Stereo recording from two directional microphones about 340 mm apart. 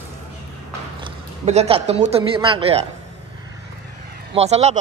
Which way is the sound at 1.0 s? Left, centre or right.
Centre.